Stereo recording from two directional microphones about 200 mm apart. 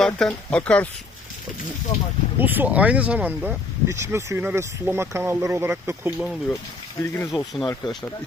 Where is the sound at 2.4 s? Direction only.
10° right (ahead or behind).